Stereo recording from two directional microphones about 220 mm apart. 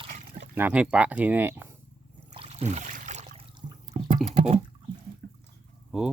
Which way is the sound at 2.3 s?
25° right (ahead or behind).